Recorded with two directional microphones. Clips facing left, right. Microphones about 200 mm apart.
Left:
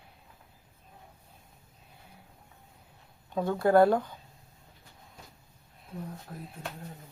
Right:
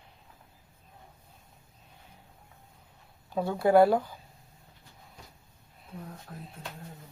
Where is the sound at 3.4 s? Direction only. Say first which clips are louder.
Right 1 dB; 10° right (ahead or behind).